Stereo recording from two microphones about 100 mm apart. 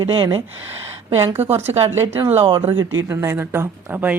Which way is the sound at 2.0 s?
30° right (ahead or behind).